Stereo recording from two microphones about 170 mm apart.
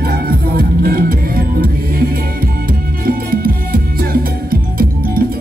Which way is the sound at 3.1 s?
60° right (ahead or behind).